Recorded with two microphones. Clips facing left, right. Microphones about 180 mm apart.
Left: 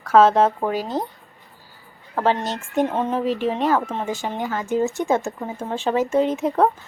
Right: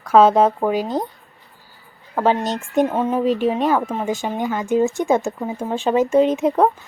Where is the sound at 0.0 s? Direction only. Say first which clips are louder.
Right 2 dB; 15° right (ahead or behind).